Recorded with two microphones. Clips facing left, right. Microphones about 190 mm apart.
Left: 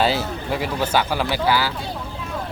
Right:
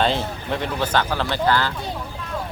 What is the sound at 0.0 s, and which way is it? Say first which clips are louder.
Speech: left 1 dB; 5° left (ahead or behind).